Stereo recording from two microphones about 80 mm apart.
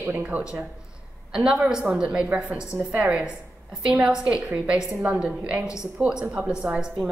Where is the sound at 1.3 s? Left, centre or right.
Centre.